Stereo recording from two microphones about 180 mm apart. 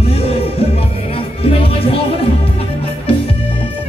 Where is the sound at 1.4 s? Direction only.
30° left (ahead or behind).